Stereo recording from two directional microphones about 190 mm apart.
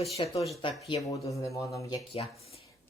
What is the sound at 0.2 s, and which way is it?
Speech, 25° left (ahead or behind).